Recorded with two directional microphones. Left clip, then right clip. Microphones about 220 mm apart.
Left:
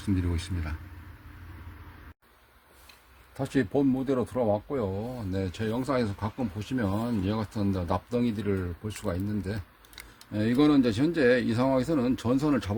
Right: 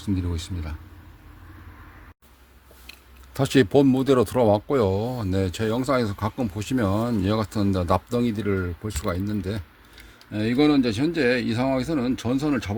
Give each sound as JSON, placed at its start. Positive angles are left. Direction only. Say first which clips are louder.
{"t": 0.2, "sound": "speech", "louder": "right 2 dB", "side_deg": -15}
{"t": 3.3, "sound": "speech", "louder": "right 9 dB", "side_deg": -45}
{"t": 10.3, "sound": "speech", "louder": "right 3 dB", "side_deg": -15}